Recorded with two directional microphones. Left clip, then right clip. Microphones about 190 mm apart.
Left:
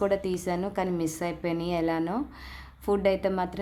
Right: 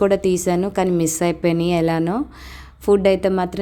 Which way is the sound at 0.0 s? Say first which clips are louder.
Right 10 dB; 35° right (ahead or behind).